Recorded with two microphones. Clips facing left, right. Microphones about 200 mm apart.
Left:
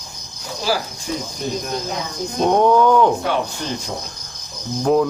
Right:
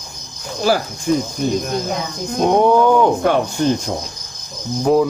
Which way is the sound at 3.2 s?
50° right (ahead or behind).